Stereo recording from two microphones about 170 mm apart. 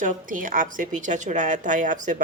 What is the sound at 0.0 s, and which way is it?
Speech, 50° right (ahead or behind).